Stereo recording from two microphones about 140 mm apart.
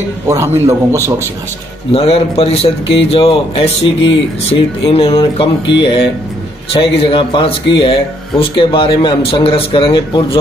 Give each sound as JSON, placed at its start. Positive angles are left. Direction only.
{"t": 0.3, "sound": "a man's voice", "side_deg": -20}
{"t": 1.9, "sound": "speech", "side_deg": 45}